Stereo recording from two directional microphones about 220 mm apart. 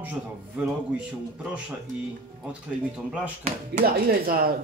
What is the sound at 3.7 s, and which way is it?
Speech, 45° right (ahead or behind).